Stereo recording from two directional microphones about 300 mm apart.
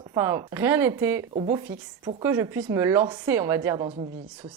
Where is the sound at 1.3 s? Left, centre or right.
Centre.